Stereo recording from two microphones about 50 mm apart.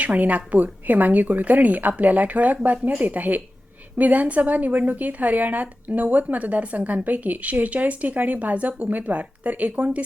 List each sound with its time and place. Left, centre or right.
0.0 s a woman's voice: right